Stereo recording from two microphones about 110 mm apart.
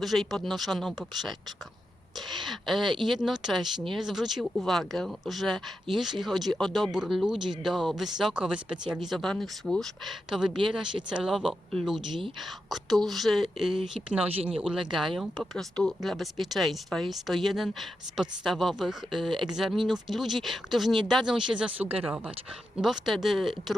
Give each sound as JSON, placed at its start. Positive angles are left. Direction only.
{"t": 0.0, "sound": "speech", "side_deg": 0}
{"t": 14.3, "sound": "speech", "side_deg": -60}
{"t": 14.6, "sound": "speech", "side_deg": -5}